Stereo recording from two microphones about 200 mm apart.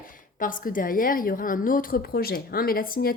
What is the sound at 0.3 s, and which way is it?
A woman's voice, 45° left (ahead or behind).